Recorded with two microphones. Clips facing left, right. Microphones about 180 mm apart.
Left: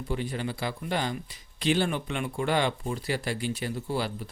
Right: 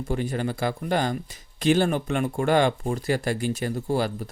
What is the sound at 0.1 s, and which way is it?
Speech, 45° right (ahead or behind).